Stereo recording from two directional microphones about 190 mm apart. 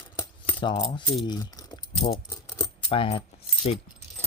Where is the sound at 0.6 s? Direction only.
25° left (ahead or behind).